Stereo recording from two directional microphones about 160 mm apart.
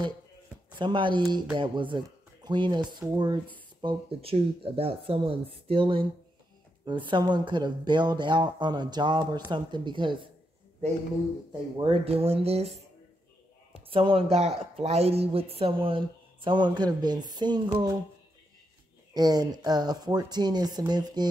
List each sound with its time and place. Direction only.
0.7 s speech: 30° right (ahead or behind)
11.8 s speech: 35° right (ahead or behind)
13.8 s speech: 35° right (ahead or behind)
19.1 s speech: 25° right (ahead or behind)